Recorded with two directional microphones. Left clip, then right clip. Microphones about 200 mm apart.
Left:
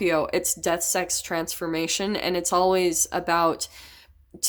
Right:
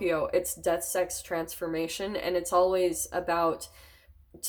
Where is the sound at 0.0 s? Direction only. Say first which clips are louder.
Left 4 dB; 50° left (ahead or behind).